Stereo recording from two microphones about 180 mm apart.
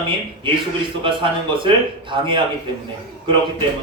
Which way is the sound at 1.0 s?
25° right (ahead or behind).